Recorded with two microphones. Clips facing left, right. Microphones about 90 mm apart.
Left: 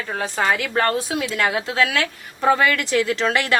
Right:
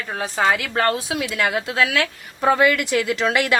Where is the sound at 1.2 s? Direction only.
40° left (ahead or behind).